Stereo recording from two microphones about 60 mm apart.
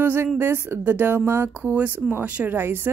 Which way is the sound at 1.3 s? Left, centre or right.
Right.